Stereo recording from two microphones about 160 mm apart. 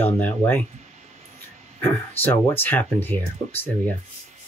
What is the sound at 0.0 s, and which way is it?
Speech, 10° left (ahead or behind).